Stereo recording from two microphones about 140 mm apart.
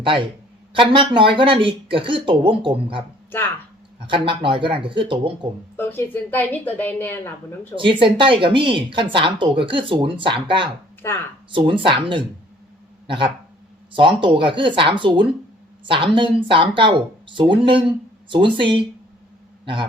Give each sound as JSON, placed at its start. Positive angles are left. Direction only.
{"t": 0.0, "sound": "a man's voice", "side_deg": -40}
{"t": 4.0, "sound": "speech", "side_deg": -35}
{"t": 5.7, "sound": "a woman's voice", "side_deg": 15}
{"t": 7.9, "sound": "a man's voice", "side_deg": -40}